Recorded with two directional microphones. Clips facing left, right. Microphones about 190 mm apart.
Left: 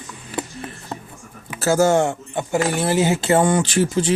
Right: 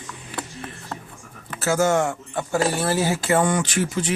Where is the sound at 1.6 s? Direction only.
35° left (ahead or behind).